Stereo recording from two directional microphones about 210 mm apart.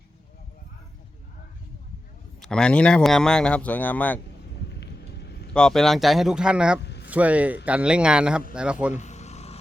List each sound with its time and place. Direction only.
2.4 s speech: 5° left (ahead or behind)
4.8 s vehicle: 50° left (ahead or behind)
5.5 s speech: centre (ahead or behind)
6.8 s a sound: 55° left (ahead or behind)
7.1 s speech: 5° right (ahead or behind)
8.9 s vehicle: 35° left (ahead or behind)